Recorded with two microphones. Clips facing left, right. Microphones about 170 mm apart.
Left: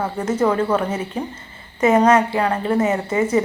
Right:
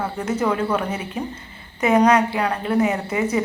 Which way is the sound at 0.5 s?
10° right (ahead or behind).